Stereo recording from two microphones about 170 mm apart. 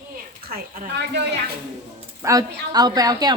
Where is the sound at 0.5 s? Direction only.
80° right.